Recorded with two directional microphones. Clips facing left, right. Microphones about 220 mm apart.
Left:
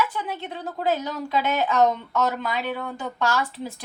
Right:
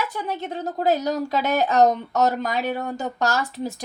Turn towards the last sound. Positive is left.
turn(degrees=-40)  # may be behind; listen again after turning